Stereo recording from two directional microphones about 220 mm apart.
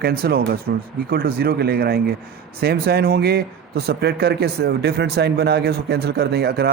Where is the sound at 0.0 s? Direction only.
45° right (ahead or behind).